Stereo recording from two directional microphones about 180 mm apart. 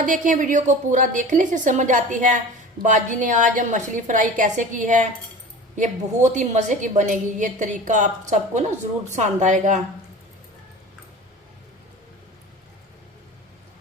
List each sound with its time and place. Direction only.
0.0 s a woman's voice: 45° right (ahead or behind)